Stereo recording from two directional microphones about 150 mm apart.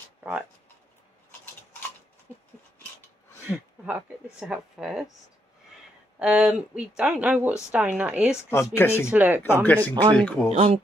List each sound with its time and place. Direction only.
0.2 s speech: 5° right (ahead or behind)
3.3 s a sound: 15° left (ahead or behind)
3.8 s speech: 10° right (ahead or behind)
6.1 s speech: 5° right (ahead or behind)
8.5 s speech: 15° left (ahead or behind)
9.1 s speech: 10° right (ahead or behind)
9.4 s speech: 15° left (ahead or behind)
10.5 s speech: 35° right (ahead or behind)